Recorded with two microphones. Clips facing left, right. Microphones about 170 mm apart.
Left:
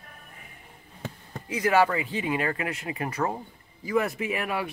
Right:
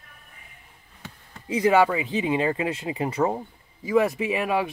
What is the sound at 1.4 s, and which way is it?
Speech, 25° right (ahead or behind).